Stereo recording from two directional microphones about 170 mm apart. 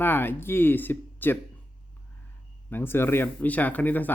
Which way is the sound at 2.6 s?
10° left (ahead or behind).